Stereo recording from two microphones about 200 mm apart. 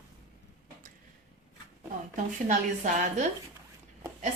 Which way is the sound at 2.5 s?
40° right (ahead or behind).